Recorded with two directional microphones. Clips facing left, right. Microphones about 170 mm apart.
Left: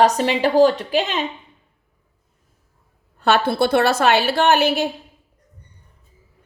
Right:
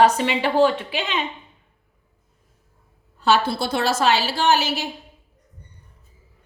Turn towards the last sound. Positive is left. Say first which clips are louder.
# left 4 dB
turn(degrees=55)  # may be behind; listen again after turning